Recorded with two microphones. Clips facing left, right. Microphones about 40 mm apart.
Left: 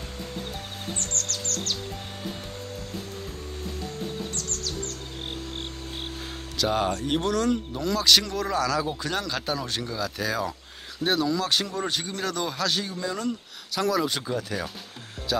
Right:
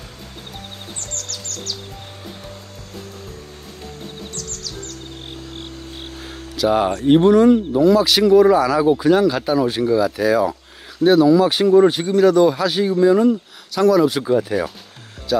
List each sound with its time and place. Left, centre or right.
0.9 s music: left
6.5 s speech: centre
7.1 s speech: right
13.7 s speech: centre
14.2 s speech: centre